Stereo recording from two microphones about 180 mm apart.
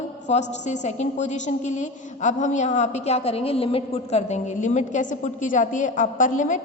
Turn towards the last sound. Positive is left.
turn(degrees=45)  # may be behind; listen again after turning